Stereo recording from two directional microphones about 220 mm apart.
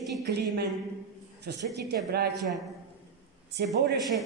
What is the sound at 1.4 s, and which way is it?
Speech, 50° right (ahead or behind).